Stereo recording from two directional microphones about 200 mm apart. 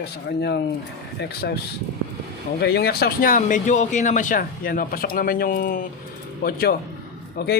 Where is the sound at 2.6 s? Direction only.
55° left (ahead or behind).